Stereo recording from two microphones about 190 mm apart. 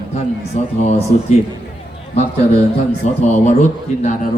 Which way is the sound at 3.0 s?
35° left (ahead or behind).